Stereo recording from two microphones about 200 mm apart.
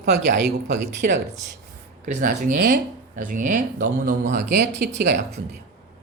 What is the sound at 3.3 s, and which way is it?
Speech, 40° right (ahead or behind).